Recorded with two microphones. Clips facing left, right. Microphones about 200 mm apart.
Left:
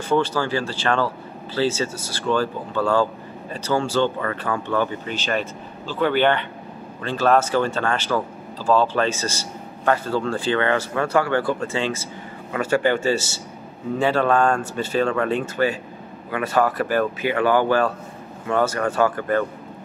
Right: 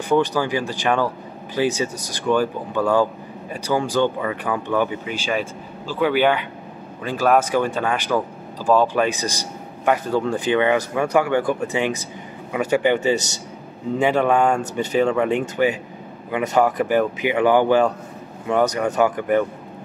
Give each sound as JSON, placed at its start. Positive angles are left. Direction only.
{"t": 0.1, "sound": "speech", "side_deg": -15}